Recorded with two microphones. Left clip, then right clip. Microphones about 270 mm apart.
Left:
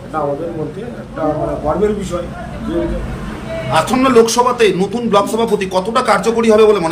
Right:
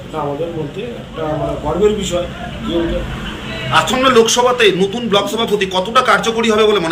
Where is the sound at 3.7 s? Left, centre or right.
Centre.